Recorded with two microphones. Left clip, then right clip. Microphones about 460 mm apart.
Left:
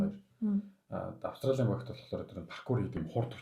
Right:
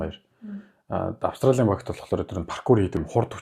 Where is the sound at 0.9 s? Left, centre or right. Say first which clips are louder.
Right 15 dB; right.